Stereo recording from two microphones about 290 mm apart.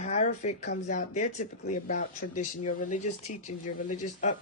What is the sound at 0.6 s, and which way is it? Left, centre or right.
Speech, left.